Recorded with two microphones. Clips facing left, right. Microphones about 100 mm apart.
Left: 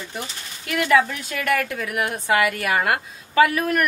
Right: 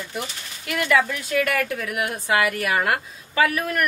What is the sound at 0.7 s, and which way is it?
Speech, 30° left (ahead or behind).